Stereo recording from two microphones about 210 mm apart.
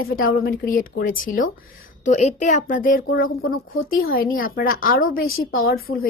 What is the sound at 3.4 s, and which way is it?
Speech, 80° left.